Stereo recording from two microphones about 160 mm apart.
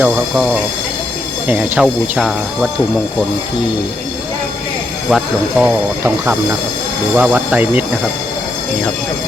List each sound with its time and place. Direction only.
0.0 s speech: 10° right (ahead or behind)
5.0 s speech: 5° right (ahead or behind)
6.0 s speech: 15° right (ahead or behind)